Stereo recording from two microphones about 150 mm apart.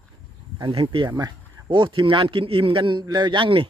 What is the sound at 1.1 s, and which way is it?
Speech, 25° right (ahead or behind).